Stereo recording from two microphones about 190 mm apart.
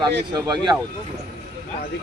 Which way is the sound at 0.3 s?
20° right (ahead or behind).